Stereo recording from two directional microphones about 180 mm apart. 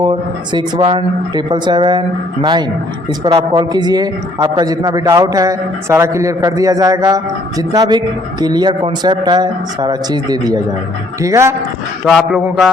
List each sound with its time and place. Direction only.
0.0 s a man's voice: 25° right (ahead or behind)
12.0 s a man's voice: centre (ahead or behind)